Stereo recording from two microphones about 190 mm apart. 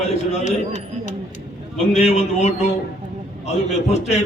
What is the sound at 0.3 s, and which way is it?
A man's voice, 40° left (ahead or behind).